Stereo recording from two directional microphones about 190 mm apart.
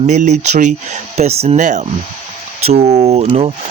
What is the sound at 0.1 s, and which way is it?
Speech, 40° right (ahead or behind).